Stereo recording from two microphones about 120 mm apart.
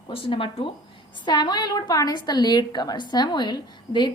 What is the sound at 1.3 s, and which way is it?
A woman's voice, 35° left (ahead or behind).